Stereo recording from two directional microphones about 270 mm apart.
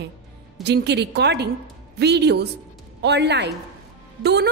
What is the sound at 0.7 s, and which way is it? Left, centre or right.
A woman's voice, right.